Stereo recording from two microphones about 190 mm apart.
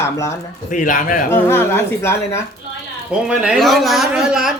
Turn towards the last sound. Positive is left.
turn(degrees=0)  # may be behind; listen again after turning